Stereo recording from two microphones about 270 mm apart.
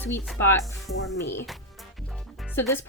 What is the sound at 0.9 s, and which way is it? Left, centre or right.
Speech, left.